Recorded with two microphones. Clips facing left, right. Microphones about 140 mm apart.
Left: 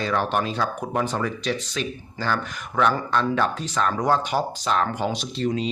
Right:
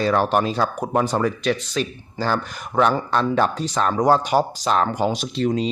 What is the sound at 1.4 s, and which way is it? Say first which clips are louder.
Speech: right 5 dB; 55° right (ahead or behind).